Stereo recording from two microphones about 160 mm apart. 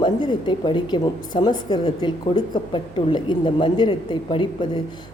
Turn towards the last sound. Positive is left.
turn(degrees=30)  # may be behind; listen again after turning